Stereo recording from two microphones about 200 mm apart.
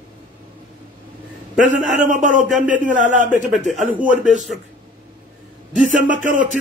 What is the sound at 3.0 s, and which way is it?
Speech, 40° right (ahead or behind).